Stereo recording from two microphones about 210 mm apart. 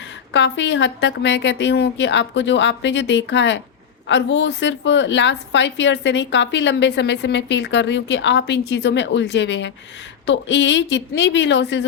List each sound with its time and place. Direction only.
0.3 s a woman's voice: 60° left (ahead or behind)